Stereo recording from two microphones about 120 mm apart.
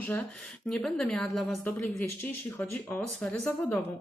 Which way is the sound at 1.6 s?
15° left (ahead or behind).